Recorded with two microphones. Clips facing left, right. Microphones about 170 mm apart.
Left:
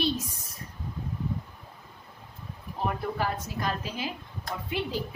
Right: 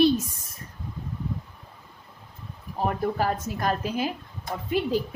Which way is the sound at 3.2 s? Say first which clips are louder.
Right 4 dB; 45° right (ahead or behind).